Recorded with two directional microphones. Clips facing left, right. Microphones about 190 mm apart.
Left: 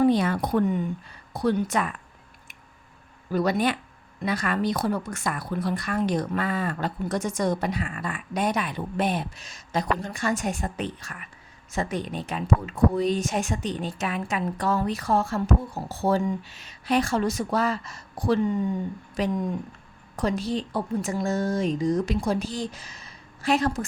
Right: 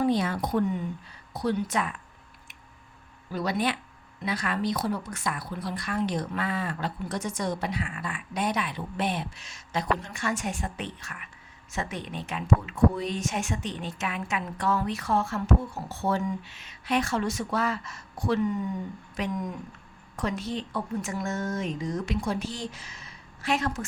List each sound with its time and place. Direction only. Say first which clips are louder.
0.0 s a woman's voice: left 4 dB; 55° left (ahead or behind)
3.3 s a woman's voice: left 5 dB; 45° left (ahead or behind)